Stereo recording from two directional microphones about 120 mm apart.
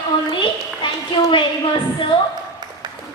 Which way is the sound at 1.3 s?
45° left (ahead or behind).